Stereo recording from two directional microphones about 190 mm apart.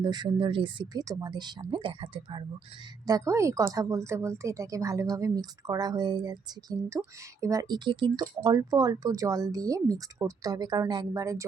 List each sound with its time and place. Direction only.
0.0 s a woman's voice: 20° right (ahead or behind)